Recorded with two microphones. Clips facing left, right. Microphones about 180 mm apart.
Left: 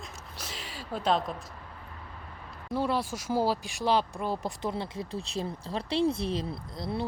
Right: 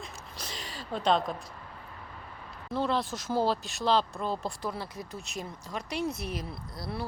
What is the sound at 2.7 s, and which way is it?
Speech, 10° left (ahead or behind).